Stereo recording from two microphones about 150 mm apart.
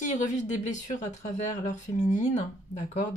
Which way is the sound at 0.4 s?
55° left (ahead or behind).